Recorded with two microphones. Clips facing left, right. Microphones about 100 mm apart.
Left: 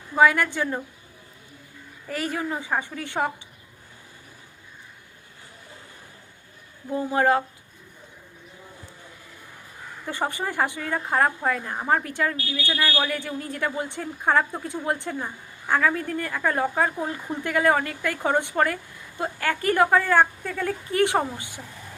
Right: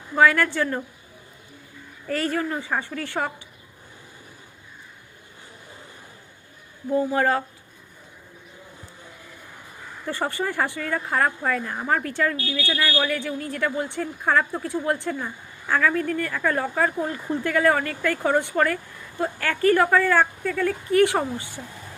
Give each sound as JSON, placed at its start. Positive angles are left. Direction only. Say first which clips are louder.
{"t": 0.2, "sound": "a woman's voice", "louder": "right 1 dB", "side_deg": 20}
{"t": 2.0, "sound": "a woman's voice", "louder": "right 3 dB", "side_deg": 15}
{"t": 7.1, "sound": "speech", "louder": "left 5 dB", "side_deg": 20}
{"t": 10.1, "sound": "speech", "louder": "right 1 dB", "side_deg": 20}